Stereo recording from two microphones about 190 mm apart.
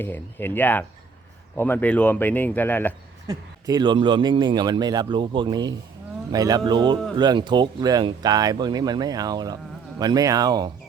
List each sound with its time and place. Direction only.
0.0 s speech: 10° left (ahead or behind)
3.2 s speech: 20° right (ahead or behind)